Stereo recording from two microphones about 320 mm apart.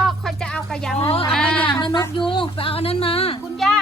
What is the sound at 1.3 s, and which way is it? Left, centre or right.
Speech, centre.